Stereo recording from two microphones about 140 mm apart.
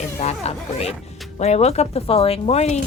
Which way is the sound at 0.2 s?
50° left (ahead or behind).